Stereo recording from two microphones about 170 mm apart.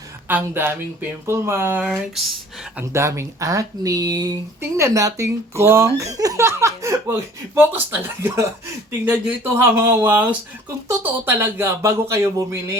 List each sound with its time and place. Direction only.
0.3 s speech: 10° right (ahead or behind)